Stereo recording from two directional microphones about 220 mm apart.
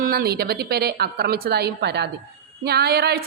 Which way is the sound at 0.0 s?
45° right (ahead or behind).